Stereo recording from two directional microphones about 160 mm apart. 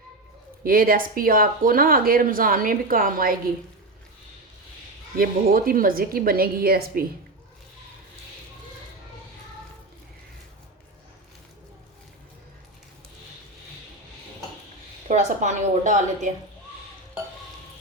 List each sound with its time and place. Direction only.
0.6 s speech: 65° right (ahead or behind)
5.1 s speech: 65° right (ahead or behind)
15.0 s a woman's voice: 50° right (ahead or behind)